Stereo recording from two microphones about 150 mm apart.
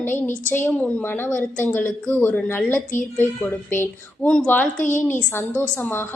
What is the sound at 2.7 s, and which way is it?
Speech, 60° left (ahead or behind).